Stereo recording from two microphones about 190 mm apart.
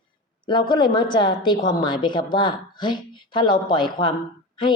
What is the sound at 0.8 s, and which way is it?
A woman's voice, 25° left (ahead or behind).